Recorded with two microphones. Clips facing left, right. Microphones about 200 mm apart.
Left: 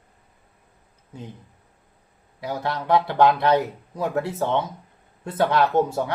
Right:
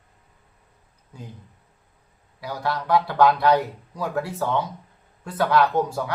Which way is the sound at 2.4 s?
20° left (ahead or behind).